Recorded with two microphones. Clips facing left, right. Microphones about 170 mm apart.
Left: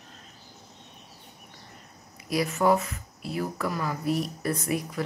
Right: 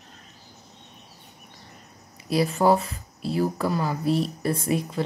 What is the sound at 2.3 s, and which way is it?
Speech, 30° right (ahead or behind).